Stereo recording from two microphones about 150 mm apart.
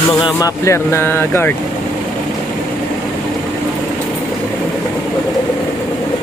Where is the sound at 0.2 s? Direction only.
20° left (ahead or behind).